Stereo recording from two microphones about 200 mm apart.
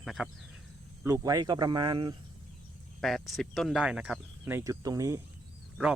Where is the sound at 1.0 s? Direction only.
15° right (ahead or behind).